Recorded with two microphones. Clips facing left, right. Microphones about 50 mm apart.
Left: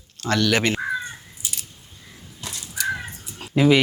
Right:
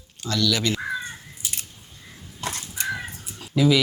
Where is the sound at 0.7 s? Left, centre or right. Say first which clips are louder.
Left 3 dB; centre.